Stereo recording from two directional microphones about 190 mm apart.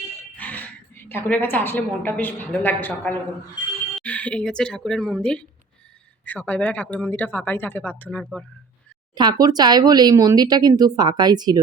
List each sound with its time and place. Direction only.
0.3 s a woman's voice: 10° left (ahead or behind)
9.1 s speech: 20° right (ahead or behind)